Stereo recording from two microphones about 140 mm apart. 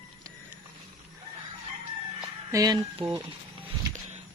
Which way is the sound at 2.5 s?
20° right (ahead or behind).